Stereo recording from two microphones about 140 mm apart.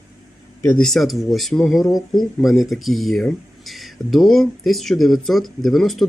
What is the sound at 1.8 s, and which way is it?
Speech, 25° left (ahead or behind).